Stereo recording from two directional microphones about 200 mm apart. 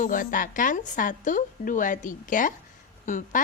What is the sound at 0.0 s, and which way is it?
A woman's voice, 40° left (ahead or behind).